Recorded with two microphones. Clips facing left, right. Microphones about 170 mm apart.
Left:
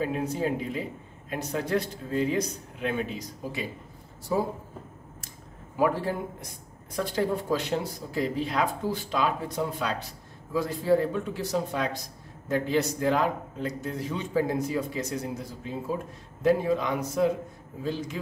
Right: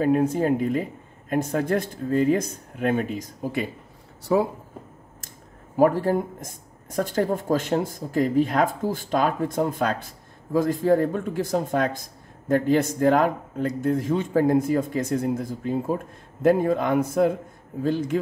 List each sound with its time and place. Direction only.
0.0 s speech: 50° right (ahead or behind)
4.3 s speech: 70° right (ahead or behind)
5.8 s speech: 45° right (ahead or behind)